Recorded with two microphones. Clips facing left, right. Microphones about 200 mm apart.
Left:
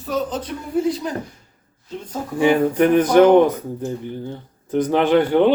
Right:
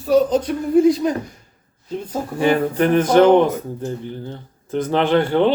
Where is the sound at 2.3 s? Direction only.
15° left (ahead or behind).